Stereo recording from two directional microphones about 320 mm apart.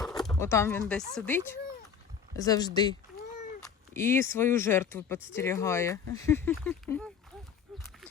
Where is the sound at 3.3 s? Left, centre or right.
Left.